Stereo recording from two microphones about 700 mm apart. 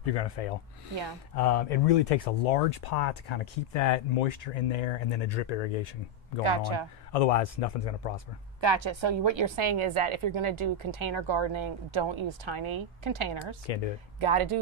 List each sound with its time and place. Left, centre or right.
0.0 s speech: left
6.4 s speech: right
7.1 s speech: left
8.5 s a woman's voice: right